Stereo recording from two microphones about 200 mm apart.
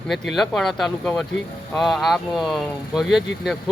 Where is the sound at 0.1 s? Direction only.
Centre (ahead or behind).